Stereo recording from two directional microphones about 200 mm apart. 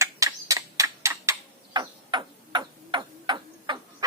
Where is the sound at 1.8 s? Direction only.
20° right (ahead or behind).